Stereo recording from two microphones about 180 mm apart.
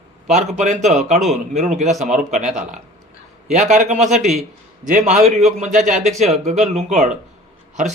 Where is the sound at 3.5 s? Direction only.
40° right (ahead or behind).